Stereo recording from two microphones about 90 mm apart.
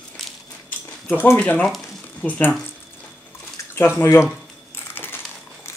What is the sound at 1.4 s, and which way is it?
Speech, 15° left (ahead or behind).